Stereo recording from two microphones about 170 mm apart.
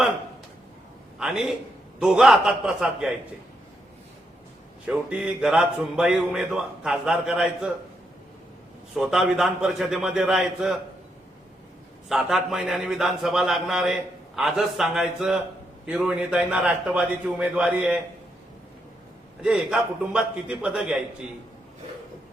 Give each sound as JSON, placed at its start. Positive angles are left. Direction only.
{"t": 1.2, "sound": "a man's voice", "side_deg": -5}
{"t": 4.9, "sound": "a man's voice", "side_deg": -5}
{"t": 9.0, "sound": "a man's voice", "side_deg": 0}
{"t": 12.0, "sound": "a man's voice", "side_deg": 0}
{"t": 19.4, "sound": "a man's voice", "side_deg": -5}